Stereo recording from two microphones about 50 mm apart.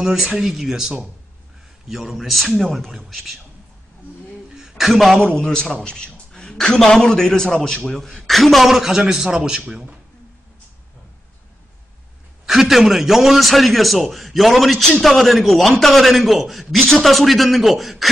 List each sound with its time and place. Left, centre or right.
0.0 s a man's voice: centre
4.6 s a sound: centre
5.4 s a man's voice: centre
12.4 s a man's voice: centre